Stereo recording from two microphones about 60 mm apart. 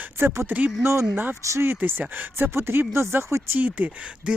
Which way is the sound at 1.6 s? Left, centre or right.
Right.